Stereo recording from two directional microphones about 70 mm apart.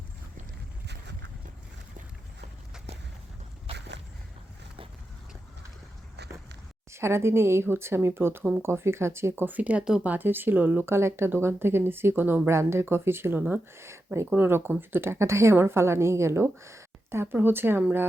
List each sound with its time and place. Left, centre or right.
6.9 s speech: right; by 10.1 s centre
10.1 s speech: right
14.3 s speech: right